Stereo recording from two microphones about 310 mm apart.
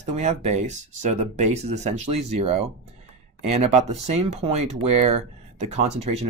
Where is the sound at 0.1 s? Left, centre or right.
Right.